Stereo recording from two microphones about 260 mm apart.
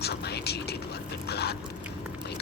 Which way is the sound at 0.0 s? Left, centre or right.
Left.